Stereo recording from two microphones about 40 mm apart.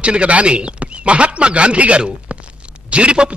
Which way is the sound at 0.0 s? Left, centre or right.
Right.